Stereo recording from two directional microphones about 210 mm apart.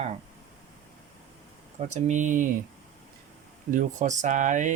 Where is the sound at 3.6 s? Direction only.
40° right (ahead or behind).